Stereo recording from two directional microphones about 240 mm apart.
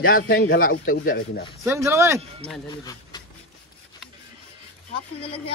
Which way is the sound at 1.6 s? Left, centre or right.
Centre.